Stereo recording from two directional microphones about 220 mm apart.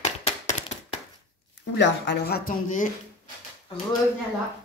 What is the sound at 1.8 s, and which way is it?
Speech, 55° left (ahead or behind).